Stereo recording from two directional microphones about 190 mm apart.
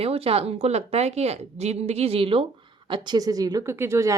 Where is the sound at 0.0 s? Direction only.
30° right (ahead or behind).